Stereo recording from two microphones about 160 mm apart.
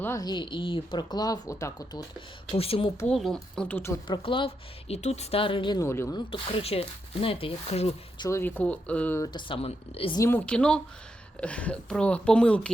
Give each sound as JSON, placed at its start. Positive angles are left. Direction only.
{"t": 0.0, "sound": "speech", "side_deg": 20}
{"t": 2.5, "sound": "a woman's voice", "side_deg": 35}
{"t": 3.1, "sound": "speech", "side_deg": 0}
{"t": 4.0, "sound": "a woman's voice", "side_deg": 30}
{"t": 6.1, "sound": "a woman's voice", "side_deg": 35}
{"t": 8.2, "sound": "a woman's voice", "side_deg": 15}
{"t": 9.2, "sound": "a woman's voice", "side_deg": 30}
{"t": 10.2, "sound": "a woman's voice", "side_deg": 15}